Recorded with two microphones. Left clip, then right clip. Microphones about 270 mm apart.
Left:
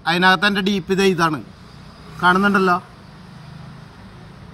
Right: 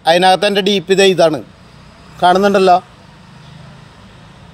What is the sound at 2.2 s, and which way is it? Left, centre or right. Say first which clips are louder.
Speech: right 5 dB; right.